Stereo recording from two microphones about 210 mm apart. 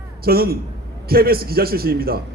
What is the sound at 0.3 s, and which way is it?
A man's voice, 45° right (ahead or behind).